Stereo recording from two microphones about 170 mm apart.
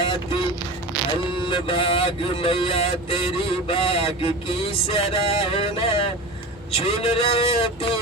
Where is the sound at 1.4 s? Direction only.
30° left (ahead or behind).